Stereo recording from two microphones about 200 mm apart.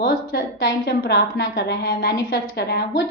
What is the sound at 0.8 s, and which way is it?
Speech, 45° left (ahead or behind).